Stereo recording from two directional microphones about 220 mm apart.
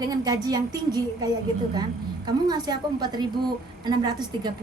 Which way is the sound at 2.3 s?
20° right (ahead or behind).